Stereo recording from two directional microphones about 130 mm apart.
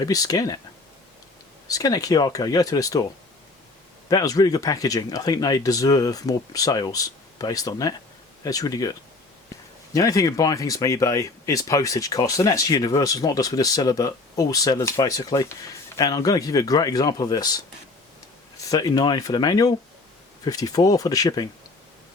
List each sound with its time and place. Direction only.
0.0 s speech: 30° left (ahead or behind)
1.6 s speech: 30° left (ahead or behind)
4.1 s speech: 30° left (ahead or behind)
18.6 s speech: 30° left (ahead or behind)